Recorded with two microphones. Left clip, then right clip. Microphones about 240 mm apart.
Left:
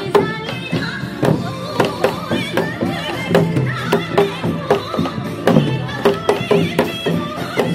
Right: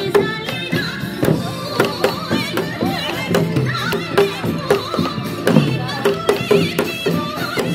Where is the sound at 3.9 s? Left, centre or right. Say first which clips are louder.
Left 2 dB; right.